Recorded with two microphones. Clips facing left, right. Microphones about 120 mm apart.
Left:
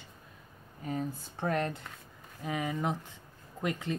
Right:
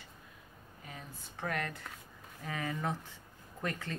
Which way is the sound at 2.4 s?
15° left (ahead or behind).